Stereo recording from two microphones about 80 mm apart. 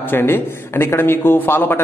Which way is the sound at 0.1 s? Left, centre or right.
Left.